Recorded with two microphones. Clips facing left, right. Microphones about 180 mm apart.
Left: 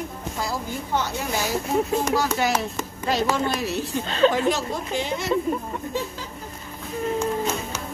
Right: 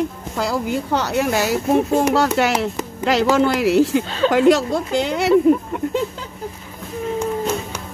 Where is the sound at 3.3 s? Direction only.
90° right; by 5.4 s 75° right (ahead or behind).